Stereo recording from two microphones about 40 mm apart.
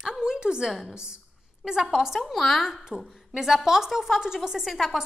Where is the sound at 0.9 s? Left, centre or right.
Right.